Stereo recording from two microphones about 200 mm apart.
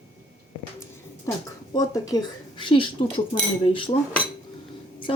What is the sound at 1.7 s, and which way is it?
Speech, 20° left (ahead or behind).